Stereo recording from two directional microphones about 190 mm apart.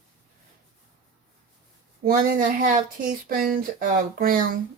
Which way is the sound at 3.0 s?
45° right (ahead or behind).